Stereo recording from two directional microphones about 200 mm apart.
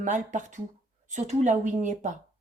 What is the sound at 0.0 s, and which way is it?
Speech, 40° right (ahead or behind).